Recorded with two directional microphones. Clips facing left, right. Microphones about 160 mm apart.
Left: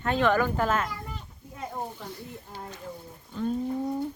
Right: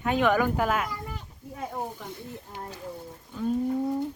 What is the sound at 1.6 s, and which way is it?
Snake, 10° right (ahead or behind).